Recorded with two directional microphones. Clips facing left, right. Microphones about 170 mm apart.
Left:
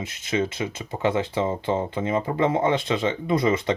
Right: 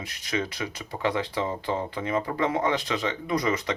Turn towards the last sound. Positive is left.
turn(degrees=25)  # may be behind; listen again after turning